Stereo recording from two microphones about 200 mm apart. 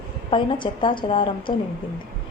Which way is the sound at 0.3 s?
25° left (ahead or behind).